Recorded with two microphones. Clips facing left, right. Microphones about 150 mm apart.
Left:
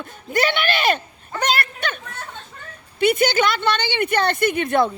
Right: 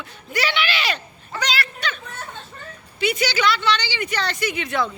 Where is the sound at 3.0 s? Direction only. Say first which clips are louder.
Left 5 dB; 55° left (ahead or behind).